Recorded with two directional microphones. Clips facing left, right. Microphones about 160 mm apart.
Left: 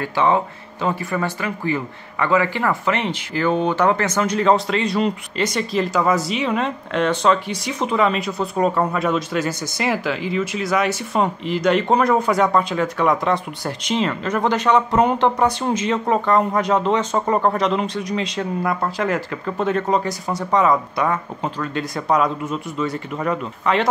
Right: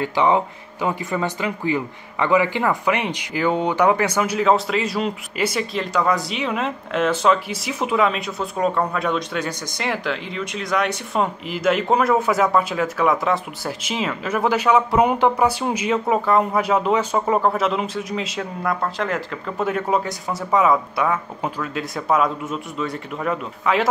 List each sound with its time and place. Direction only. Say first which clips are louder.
0.0 s speech: even; 15° right (ahead or behind)